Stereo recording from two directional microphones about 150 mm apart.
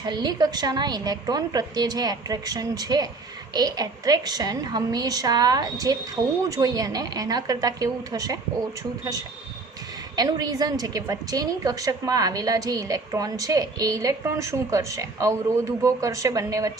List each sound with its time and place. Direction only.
0.0 s a woman's voice: 30° right (ahead or behind)
10.2 s a woman's voice: 25° right (ahead or behind)